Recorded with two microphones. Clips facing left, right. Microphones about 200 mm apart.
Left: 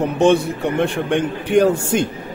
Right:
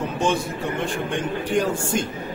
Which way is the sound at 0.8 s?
65° left (ahead or behind).